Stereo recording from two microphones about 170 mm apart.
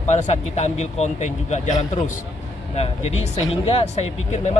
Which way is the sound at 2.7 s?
40° left (ahead or behind).